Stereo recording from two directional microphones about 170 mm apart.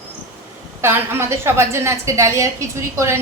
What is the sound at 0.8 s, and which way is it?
A woman's voice, 15° right (ahead or behind).